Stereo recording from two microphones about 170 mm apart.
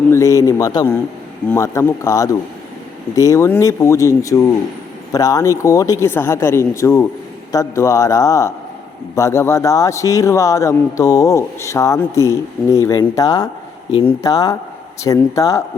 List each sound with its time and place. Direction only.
0.1 s speech: 20° left (ahead or behind)